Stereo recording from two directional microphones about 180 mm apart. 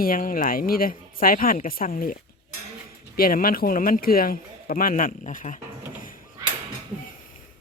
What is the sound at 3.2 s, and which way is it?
A man's voice, 55° left (ahead or behind).